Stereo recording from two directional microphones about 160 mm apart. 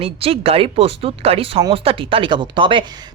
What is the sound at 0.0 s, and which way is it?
A woman's voice, 35° right (ahead or behind).